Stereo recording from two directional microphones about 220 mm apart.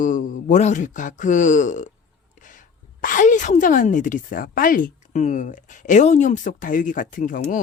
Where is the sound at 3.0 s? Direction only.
35° left (ahead or behind).